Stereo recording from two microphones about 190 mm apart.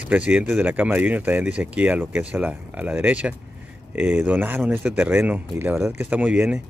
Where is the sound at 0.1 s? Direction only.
5° right (ahead or behind).